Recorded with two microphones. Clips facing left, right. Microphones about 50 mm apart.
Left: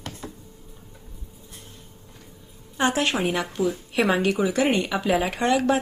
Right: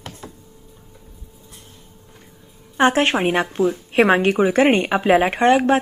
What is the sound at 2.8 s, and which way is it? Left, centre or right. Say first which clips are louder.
A woman's voice: right 6 dB; right.